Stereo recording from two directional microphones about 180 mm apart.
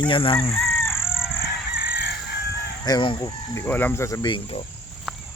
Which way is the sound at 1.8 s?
60° left (ahead or behind).